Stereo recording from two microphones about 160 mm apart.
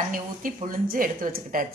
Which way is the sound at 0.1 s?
60° right (ahead or behind).